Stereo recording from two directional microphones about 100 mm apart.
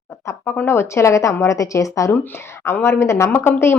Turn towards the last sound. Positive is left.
turn(degrees=25)  # may be behind; listen again after turning